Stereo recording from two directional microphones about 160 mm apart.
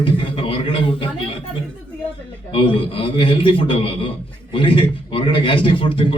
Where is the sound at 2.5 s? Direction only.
35° left (ahead or behind).